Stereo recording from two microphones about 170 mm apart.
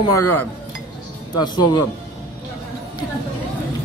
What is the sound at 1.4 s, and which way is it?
Speech, 25° left (ahead or behind).